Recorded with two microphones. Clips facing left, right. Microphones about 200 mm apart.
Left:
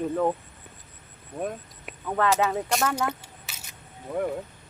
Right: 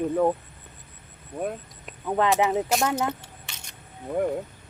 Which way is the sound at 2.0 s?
15° right (ahead or behind).